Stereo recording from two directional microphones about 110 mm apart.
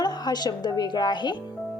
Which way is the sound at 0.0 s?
40° left (ahead or behind).